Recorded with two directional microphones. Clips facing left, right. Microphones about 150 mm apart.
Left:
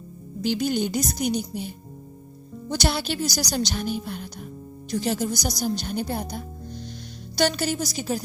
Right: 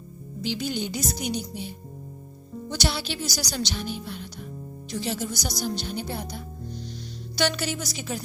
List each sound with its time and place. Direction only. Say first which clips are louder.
0.4 s a woman's voice: left 5 dB; 50° left (ahead or behind)